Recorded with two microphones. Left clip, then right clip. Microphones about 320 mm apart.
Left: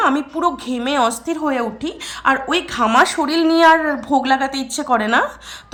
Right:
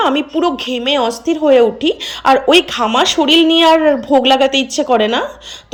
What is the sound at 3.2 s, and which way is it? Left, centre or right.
Speech, centre.